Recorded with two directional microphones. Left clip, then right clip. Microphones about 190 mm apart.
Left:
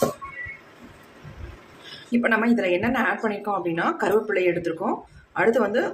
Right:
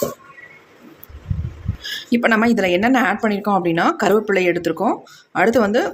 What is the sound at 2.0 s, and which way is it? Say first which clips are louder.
A woman's voice: right 5 dB; 50° right (ahead or behind).